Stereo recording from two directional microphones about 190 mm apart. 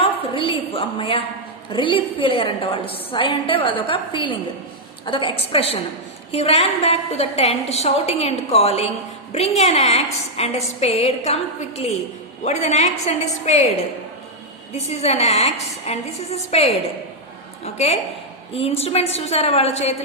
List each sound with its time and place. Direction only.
0.0 s a sound: 30° left (ahead or behind)
1.7 s a woman's voice: 25° left (ahead or behind)
12.5 s a woman's voice: 35° left (ahead or behind)
14.8 s a woman's voice: 35° left (ahead or behind)